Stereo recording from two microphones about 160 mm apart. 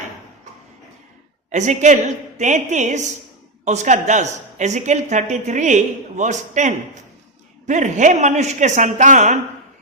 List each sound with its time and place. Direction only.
1.5 s a woman's voice: 50° right (ahead or behind)